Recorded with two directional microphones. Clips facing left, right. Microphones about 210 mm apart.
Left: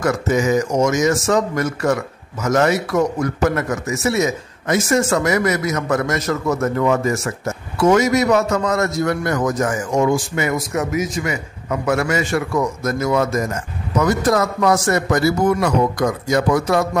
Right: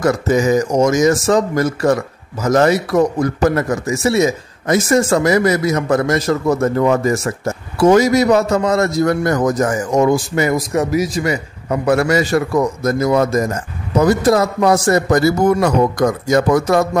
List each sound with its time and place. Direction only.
0.0 s a man's voice: 35° right (ahead or behind)